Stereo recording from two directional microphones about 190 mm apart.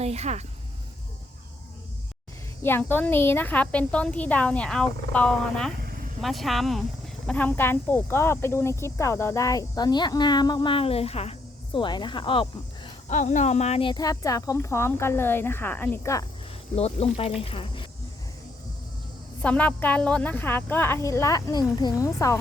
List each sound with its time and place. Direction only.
0.0 s speech: 35° right (ahead or behind)
2.6 s speech: 10° left (ahead or behind)
13.1 s speech: 40° left (ahead or behind); by 16.2 s 10° left (ahead or behind)
16.7 s speech: 30° left (ahead or behind)
19.4 s speech: 5° left (ahead or behind)